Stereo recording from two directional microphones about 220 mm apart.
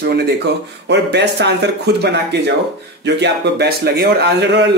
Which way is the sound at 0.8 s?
50° right (ahead or behind).